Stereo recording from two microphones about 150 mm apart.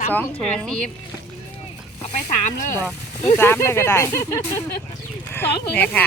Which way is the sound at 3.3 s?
15° left (ahead or behind).